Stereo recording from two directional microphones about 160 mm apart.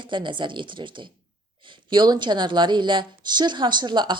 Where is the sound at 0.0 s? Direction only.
30° right (ahead or behind).